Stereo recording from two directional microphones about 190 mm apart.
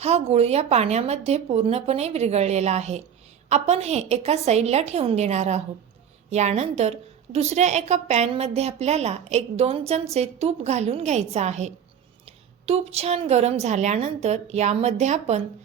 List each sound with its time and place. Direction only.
0.0 s a woman's voice: 35° right (ahead or behind)